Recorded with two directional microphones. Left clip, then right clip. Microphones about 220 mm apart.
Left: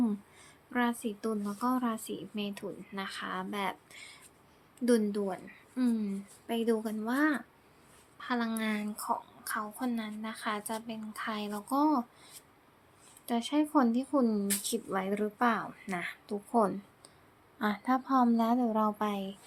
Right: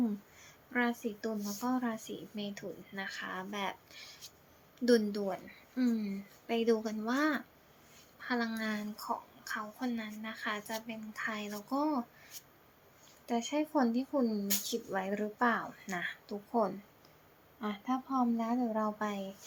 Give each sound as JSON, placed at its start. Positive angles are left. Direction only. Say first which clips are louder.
{"t": 0.7, "sound": "a woman's voice", "louder": "left 1 dB", "side_deg": 15}
{"t": 13.2, "sound": "a woman's voice", "louder": "left 3 dB", "side_deg": 20}